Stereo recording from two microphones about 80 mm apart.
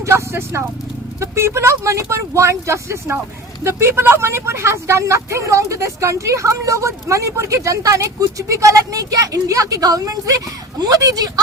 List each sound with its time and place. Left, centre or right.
0.0 s speech: right